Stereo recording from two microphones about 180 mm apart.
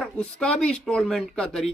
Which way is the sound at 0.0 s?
5° left (ahead or behind).